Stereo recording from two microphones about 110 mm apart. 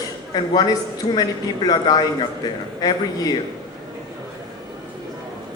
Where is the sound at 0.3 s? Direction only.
40° left (ahead or behind).